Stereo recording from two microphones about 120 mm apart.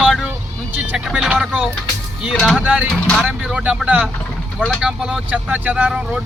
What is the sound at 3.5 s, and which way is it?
Speech, 10° right (ahead or behind).